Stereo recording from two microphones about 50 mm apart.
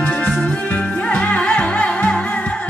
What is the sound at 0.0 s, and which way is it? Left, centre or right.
Music, left.